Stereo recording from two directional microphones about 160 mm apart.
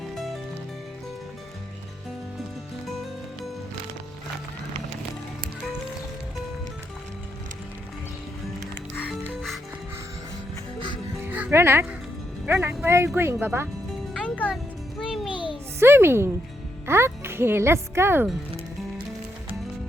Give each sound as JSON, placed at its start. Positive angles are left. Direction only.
{"t": 9.2, "sound": "music", "side_deg": 0}
{"t": 11.2, "sound": "music", "side_deg": -10}
{"t": 12.5, "sound": "a woman's voice", "side_deg": -15}
{"t": 14.1, "sound": "music", "side_deg": 5}
{"t": 15.8, "sound": "a woman's voice", "side_deg": -15}